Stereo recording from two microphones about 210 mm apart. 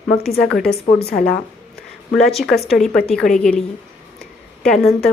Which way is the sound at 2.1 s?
Centre (ahead or behind).